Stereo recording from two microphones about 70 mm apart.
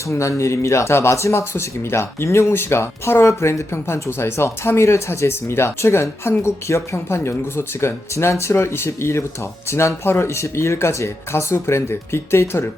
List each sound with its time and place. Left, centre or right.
0.1 s speech: left